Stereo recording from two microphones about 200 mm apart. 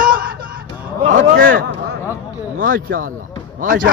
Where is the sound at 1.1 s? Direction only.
65° right (ahead or behind).